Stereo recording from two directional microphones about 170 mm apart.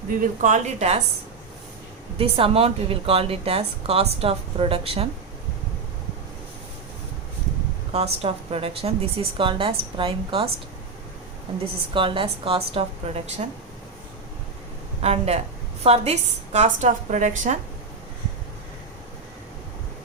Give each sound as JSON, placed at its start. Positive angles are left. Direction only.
{"t": 0.4, "sound": "a woman's voice", "side_deg": -45}
{"t": 2.1, "sound": "a woman's voice", "side_deg": -35}
{"t": 7.9, "sound": "a woman's voice", "side_deg": -35}
{"t": 11.9, "sound": "a woman's voice", "side_deg": -30}
{"t": 15.0, "sound": "a woman's voice", "side_deg": -40}